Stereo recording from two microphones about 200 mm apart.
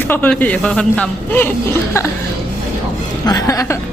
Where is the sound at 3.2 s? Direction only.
20° left (ahead or behind).